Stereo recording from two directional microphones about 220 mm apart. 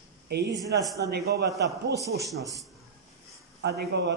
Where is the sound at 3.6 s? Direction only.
50° right (ahead or behind).